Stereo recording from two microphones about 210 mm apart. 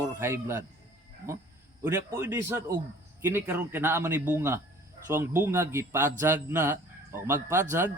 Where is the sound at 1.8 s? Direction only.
10° right (ahead or behind).